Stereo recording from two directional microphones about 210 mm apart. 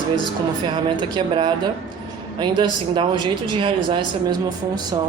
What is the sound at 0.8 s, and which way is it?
A woman's voice, 20° right (ahead or behind).